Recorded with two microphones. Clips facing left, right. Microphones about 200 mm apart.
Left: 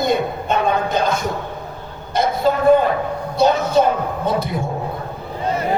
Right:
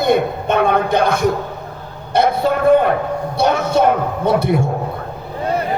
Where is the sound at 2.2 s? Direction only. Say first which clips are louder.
Right 2 dB; 65° right (ahead or behind).